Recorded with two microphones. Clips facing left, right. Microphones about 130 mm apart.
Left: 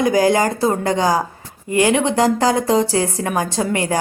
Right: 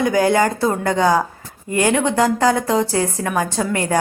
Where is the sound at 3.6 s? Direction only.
20° left (ahead or behind).